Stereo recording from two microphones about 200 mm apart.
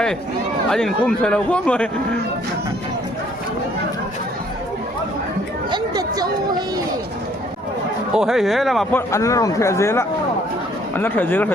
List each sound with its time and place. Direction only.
0.7 s a man's voice: 5° left (ahead or behind)
5.7 s speech: 20° right (ahead or behind)
8.1 s speech: centre (ahead or behind)